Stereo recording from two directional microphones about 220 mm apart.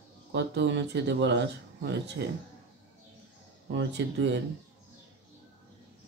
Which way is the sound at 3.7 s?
55° right (ahead or behind).